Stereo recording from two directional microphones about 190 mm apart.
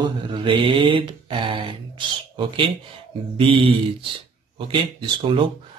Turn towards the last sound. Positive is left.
turn(degrees=-25)  # may be behind; listen again after turning